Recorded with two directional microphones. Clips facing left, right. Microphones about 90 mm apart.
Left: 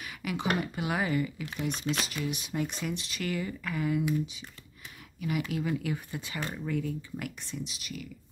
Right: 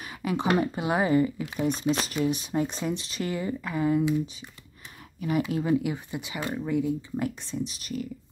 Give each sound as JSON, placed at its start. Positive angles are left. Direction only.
{"t": 0.0, "sound": "speech", "side_deg": -30}
{"t": 1.4, "sound": "speech", "side_deg": -20}
{"t": 1.8, "sound": "speech", "side_deg": -35}
{"t": 5.5, "sound": "speech", "side_deg": -30}